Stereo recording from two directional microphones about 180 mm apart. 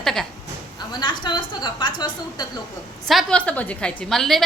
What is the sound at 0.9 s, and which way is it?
A woman's voice, 25° left (ahead or behind).